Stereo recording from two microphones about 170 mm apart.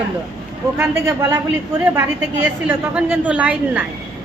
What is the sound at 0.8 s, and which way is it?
Speech, 20° right (ahead or behind).